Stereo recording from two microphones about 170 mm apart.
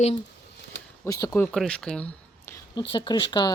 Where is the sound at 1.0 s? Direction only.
20° left (ahead or behind).